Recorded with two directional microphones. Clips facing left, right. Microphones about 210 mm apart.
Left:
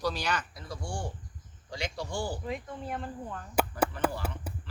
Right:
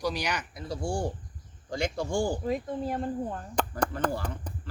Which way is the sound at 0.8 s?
40° right (ahead or behind).